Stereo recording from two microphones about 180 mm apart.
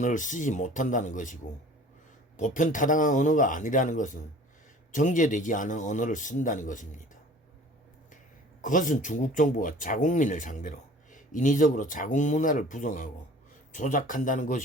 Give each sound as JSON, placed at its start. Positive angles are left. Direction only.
{"t": 0.0, "sound": "speech", "side_deg": 45}
{"t": 8.6, "sound": "speech", "side_deg": 45}